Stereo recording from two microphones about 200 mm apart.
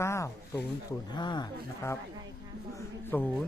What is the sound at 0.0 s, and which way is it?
Speech, 15° left (ahead or behind).